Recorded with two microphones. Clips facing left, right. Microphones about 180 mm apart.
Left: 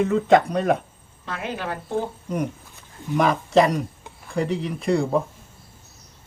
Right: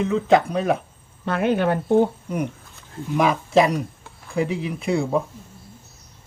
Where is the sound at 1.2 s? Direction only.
55° right (ahead or behind).